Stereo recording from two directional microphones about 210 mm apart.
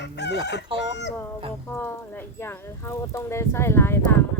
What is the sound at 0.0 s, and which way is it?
Chicken, 55° left (ahead or behind).